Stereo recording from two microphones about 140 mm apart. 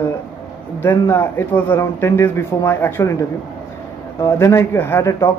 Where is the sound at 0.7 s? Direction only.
15° left (ahead or behind).